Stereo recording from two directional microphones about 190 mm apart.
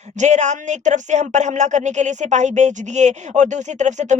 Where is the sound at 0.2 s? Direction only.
40° right (ahead or behind).